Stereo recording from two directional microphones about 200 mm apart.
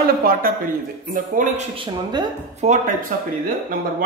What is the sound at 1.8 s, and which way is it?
Speech, 20° right (ahead or behind).